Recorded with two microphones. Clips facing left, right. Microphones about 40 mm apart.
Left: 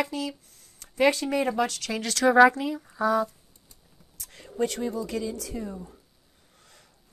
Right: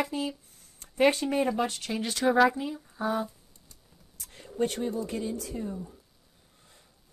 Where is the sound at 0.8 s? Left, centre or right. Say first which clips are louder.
Left 1 dB; left.